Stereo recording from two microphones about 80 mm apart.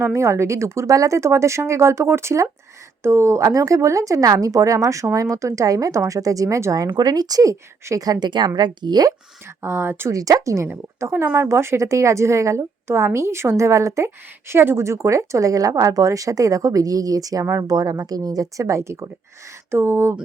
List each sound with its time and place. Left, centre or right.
0.0 s a woman's voice: right
6.9 s a woman's voice: right
8.4 s a woman's voice: right
9.6 s speech: right
10.1 s speech: right
11.0 s a woman's voice: right